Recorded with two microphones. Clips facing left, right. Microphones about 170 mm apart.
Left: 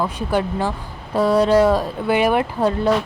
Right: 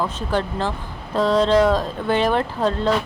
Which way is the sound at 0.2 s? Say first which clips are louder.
Left 2 dB; 10° left (ahead or behind).